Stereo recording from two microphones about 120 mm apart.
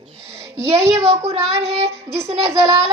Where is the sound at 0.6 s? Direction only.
60° right (ahead or behind).